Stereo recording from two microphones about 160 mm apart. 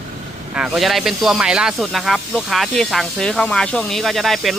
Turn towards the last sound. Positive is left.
turn(degrees=0)  # may be behind; listen again after turning